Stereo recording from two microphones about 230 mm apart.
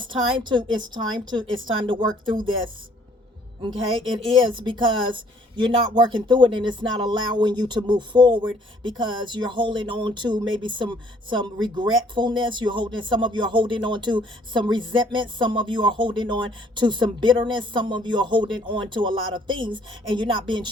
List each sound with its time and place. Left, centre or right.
0.0 s speech: right
4.4 s speech: right